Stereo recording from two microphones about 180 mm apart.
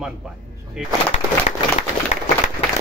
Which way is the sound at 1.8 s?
35° left (ahead or behind).